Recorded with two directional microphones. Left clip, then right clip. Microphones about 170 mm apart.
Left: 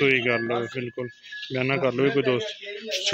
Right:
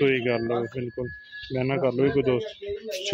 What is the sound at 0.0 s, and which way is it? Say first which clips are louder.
A man's voice: left 2 dB; 15° right (ahead or behind).